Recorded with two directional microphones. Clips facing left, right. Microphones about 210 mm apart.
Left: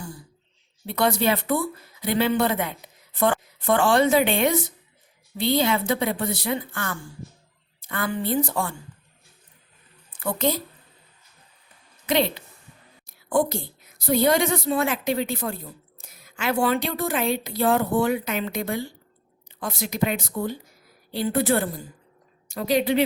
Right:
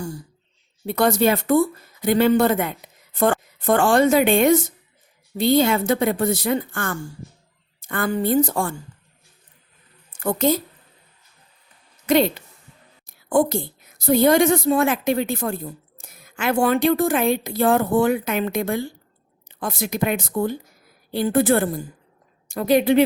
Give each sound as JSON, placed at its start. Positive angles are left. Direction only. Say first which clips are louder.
{"t": 0.9, "sound": "a woman's voice", "louder": "right 4 dB", "side_deg": -45}
{"t": 10.1, "sound": "a woman's voice", "louder": "right 5 dB", "side_deg": -45}
{"t": 12.0, "sound": "a woman's voice", "louder": "right 5 dB", "side_deg": -45}
{"t": 13.1, "sound": "a sound", "louder": "right 4 dB", "side_deg": -50}
{"t": 14.0, "sound": "a woman's voice", "louder": "right 5 dB", "side_deg": -50}